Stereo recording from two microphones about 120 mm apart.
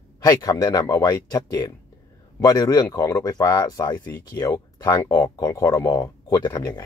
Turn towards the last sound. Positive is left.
turn(degrees=35)  # may be behind; listen again after turning